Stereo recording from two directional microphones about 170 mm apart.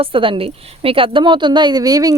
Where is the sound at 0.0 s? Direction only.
30° right (ahead or behind).